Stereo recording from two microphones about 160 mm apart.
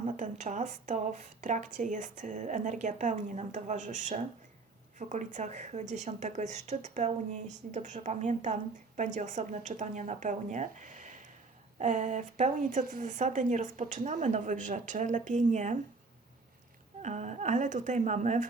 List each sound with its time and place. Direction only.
0.2 s speech: 50° right (ahead or behind)
17.0 s speech: 50° right (ahead or behind)